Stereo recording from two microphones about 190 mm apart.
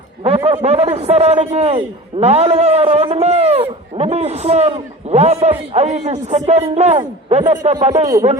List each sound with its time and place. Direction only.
0.3 s a man's voice: 30° right (ahead or behind)
8.0 s speech: 15° right (ahead or behind)